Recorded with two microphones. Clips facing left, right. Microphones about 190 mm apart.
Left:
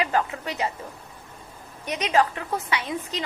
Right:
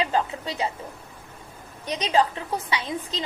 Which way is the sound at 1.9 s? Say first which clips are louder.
Even; 30° right (ahead or behind).